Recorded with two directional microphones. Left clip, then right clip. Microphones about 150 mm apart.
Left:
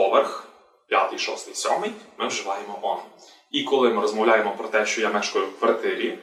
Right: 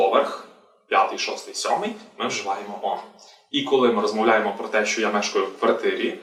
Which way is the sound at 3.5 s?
Centre (ahead or behind).